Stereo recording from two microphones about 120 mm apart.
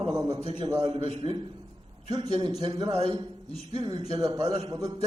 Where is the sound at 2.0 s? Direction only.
35° right (ahead or behind).